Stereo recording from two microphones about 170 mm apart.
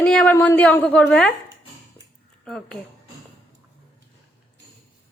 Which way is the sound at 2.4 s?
5° left (ahead or behind).